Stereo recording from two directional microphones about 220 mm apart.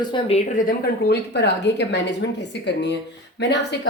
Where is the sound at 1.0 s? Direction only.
50° left (ahead or behind).